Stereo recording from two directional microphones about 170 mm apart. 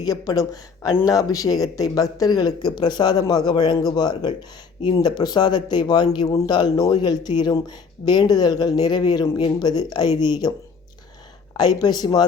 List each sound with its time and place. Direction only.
0.0 s speech: 20° left (ahead or behind)
11.5 s speech: 25° left (ahead or behind)